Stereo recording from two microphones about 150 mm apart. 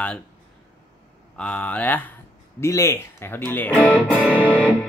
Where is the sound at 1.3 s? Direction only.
5° left (ahead or behind).